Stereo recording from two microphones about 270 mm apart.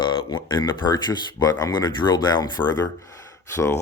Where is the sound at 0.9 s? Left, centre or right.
Centre.